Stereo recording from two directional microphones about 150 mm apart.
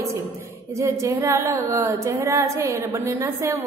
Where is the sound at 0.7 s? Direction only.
20° right (ahead or behind).